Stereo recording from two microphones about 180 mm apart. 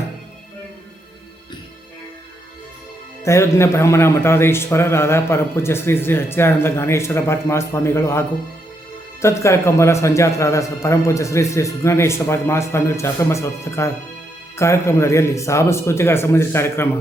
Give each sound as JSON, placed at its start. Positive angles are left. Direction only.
{"t": 3.2, "sound": "a man's voice", "side_deg": 15}